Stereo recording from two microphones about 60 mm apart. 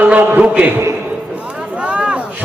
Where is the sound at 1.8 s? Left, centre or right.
Right.